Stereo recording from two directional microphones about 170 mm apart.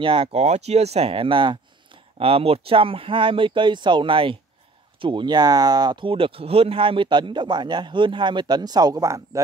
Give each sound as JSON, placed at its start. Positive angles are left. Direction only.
{"t": 0.0, "sound": "speech", "side_deg": -30}